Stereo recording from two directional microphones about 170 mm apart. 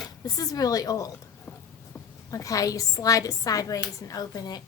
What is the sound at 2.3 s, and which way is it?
A woman's voice, 20° left (ahead or behind).